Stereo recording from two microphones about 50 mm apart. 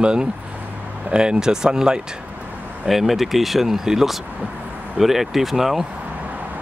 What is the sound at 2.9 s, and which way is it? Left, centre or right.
Speech, centre.